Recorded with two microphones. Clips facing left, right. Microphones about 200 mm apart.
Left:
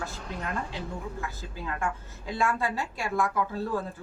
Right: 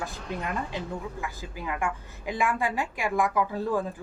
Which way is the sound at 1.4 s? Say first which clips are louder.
Right 4 dB; 15° right (ahead or behind).